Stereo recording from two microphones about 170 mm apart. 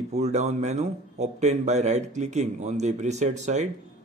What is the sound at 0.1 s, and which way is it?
Speech, 40° right (ahead or behind).